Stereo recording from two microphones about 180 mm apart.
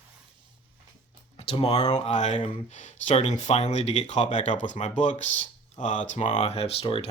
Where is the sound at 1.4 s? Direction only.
30° left (ahead or behind).